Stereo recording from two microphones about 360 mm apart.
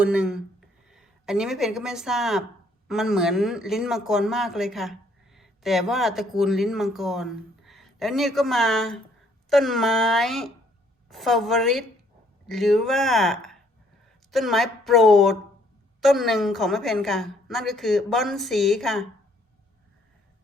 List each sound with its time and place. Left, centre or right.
0.0 s speech: centre